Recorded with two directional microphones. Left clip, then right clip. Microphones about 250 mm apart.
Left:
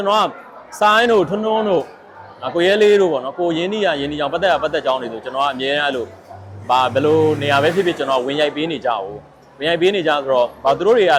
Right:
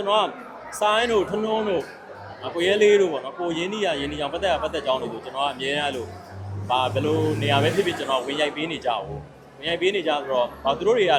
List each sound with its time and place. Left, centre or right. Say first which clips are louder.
0.0 s speech: left 5 dB; left